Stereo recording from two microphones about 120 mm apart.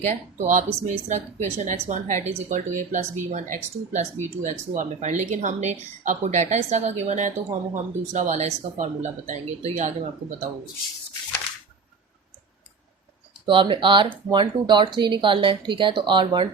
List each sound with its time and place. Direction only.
0.0 s speech: 80° right
13.4 s speech: 45° right (ahead or behind)